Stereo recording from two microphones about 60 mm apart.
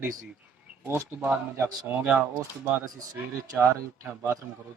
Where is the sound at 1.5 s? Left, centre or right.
Right.